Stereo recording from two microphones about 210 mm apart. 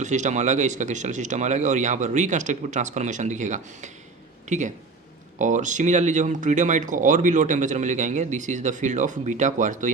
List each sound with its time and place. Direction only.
0.0 s speech: 35° right (ahead or behind)